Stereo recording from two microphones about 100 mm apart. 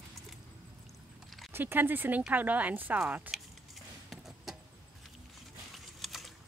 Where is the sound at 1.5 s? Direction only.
20° right (ahead or behind).